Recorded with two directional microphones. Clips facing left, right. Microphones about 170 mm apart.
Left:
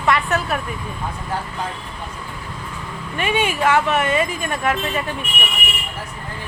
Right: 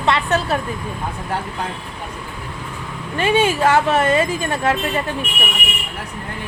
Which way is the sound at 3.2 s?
35° right (ahead or behind).